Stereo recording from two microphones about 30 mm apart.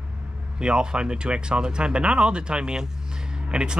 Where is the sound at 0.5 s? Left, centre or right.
Right.